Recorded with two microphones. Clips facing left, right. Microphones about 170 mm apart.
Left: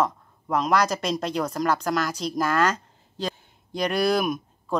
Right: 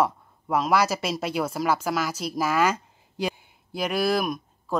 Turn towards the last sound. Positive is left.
turn(degrees=0)  # may be behind; listen again after turning